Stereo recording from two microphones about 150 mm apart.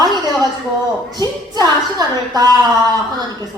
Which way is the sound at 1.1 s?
25° right (ahead or behind).